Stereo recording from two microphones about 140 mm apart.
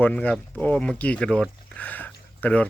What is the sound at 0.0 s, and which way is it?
Speech, 10° left (ahead or behind).